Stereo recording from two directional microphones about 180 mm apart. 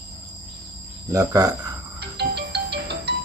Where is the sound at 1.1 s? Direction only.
20° right (ahead or behind).